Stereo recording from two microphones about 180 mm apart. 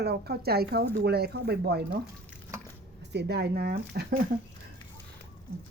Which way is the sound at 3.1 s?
70° right (ahead or behind).